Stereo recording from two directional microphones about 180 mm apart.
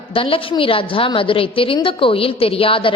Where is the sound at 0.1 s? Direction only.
30° left (ahead or behind).